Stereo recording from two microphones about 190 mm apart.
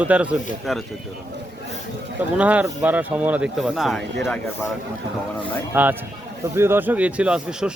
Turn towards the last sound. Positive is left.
turn(degrees=-5)  # may be behind; listen again after turning